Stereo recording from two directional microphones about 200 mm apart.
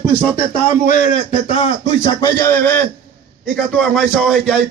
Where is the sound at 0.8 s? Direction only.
40° left (ahead or behind).